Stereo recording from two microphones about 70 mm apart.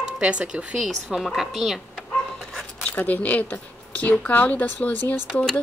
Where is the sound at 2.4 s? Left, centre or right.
Centre.